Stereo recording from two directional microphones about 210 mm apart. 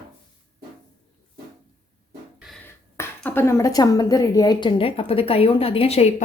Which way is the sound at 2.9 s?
10° left (ahead or behind).